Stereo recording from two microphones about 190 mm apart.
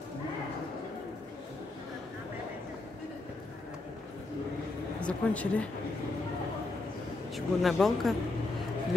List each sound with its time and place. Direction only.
5.0 s speech: 5° left (ahead or behind)
7.3 s speech: centre (ahead or behind)